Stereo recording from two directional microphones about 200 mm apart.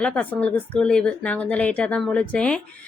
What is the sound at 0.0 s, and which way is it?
Speech, 5° left (ahead or behind).